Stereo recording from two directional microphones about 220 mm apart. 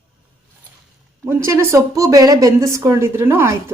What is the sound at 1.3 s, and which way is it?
A woman's voice, 10° right (ahead or behind).